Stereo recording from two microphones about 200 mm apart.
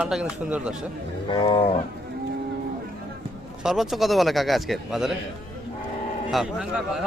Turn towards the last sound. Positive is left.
turn(degrees=-5)  # may be behind; listen again after turning